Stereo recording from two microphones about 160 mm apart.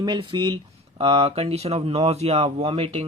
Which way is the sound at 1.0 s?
40° right (ahead or behind).